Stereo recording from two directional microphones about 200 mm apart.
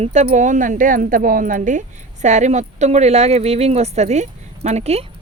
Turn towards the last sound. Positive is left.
turn(degrees=-30)  # may be behind; listen again after turning